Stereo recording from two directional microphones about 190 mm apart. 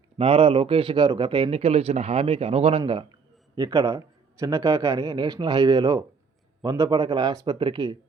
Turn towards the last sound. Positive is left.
turn(degrees=-25)  # may be behind; listen again after turning